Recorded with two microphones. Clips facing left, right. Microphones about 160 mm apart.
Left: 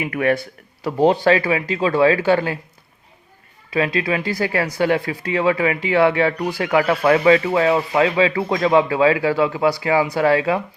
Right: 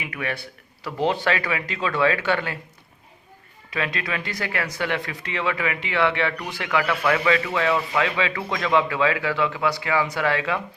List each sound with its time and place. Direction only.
0.0 s a man's voice: 45° left (ahead or behind)
3.7 s speech: 30° left (ahead or behind)